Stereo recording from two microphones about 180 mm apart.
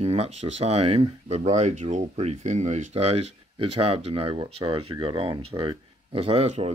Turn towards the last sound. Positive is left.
turn(degrees=-35)  # may be behind; listen again after turning